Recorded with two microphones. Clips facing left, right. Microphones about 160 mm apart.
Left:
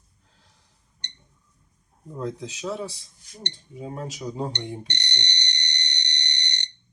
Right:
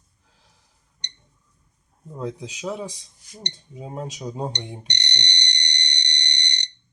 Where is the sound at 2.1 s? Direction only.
15° right (ahead or behind).